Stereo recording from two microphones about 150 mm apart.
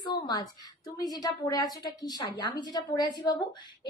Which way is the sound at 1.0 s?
25° left (ahead or behind).